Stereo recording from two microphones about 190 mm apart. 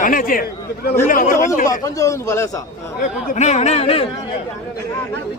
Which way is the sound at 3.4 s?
35° left (ahead or behind).